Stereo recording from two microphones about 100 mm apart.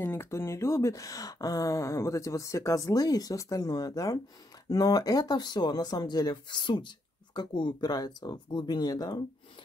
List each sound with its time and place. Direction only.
0.0 s speech: 25° left (ahead or behind)